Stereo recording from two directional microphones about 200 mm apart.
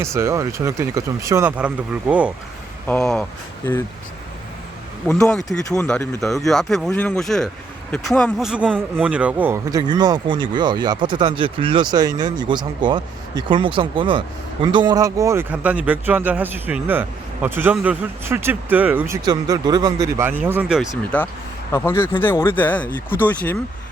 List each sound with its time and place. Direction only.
0.0 s speech: 15° right (ahead or behind)
2.8 s speech: 5° left (ahead or behind)
5.3 s speech: centre (ahead or behind)
9.9 s speech: 20° right (ahead or behind); by 20.8 s 5° right (ahead or behind)
21.7 s speech: 15° left (ahead or behind)